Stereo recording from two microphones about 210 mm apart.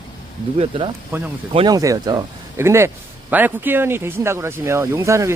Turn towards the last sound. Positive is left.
turn(degrees=-15)  # may be behind; listen again after turning